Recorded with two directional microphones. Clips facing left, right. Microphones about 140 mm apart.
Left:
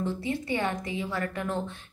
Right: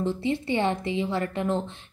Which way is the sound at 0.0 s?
25° right (ahead or behind).